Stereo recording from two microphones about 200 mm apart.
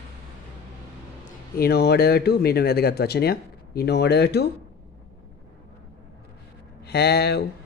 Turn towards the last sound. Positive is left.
turn(degrees=55)  # may be behind; listen again after turning